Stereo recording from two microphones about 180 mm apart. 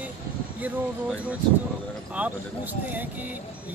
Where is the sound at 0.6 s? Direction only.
10° right (ahead or behind).